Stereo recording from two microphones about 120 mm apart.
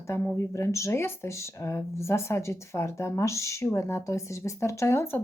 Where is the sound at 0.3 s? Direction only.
25° left (ahead or behind).